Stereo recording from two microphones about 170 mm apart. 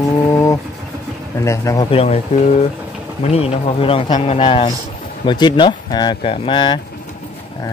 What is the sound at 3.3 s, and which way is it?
Speech, 35° left (ahead or behind).